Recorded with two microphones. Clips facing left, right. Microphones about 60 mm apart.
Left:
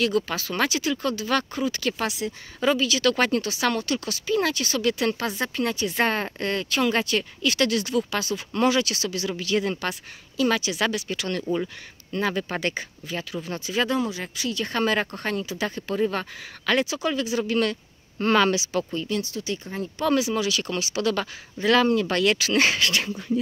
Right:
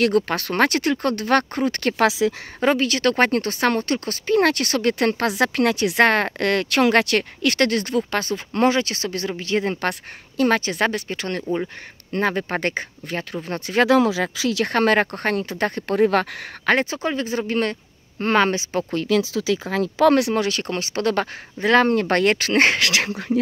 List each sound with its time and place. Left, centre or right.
0.0 s speech: right
9.8 s speech: right
13.8 s speech: right
14.7 s speech: right
16.6 s speech: right
18.9 s speech: right
19.7 s speech: right
20.1 s speech: right
22.8 s speech: right